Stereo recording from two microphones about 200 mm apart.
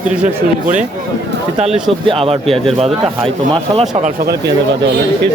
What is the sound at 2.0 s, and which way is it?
Speech, 30° right (ahead or behind).